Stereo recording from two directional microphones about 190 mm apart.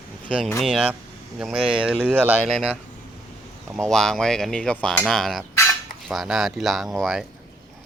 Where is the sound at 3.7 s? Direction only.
Centre (ahead or behind).